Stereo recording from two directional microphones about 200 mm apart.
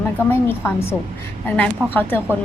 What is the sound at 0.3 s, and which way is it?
Speech, 10° left (ahead or behind).